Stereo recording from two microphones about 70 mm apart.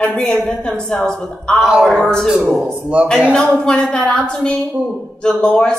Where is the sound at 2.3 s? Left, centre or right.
Centre.